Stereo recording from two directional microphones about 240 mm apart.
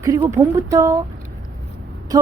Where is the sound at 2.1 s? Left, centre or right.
Centre.